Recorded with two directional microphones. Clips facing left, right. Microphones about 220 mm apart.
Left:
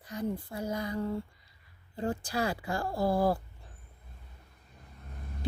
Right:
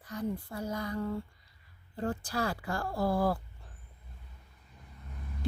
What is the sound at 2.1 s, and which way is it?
Speech, 15° left (ahead or behind).